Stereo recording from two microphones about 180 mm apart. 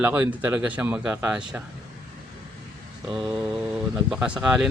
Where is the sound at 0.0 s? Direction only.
10° right (ahead or behind).